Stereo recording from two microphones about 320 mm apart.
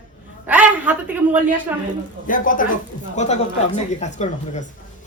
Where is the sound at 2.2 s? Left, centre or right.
Left.